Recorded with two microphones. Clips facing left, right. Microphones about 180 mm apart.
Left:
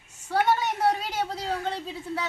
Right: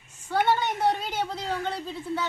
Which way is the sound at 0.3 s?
10° left (ahead or behind).